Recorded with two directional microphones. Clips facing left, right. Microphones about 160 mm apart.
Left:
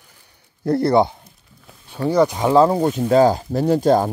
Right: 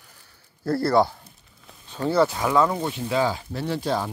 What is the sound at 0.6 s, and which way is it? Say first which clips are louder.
Speech: left 4 dB; 20° left (ahead or behind).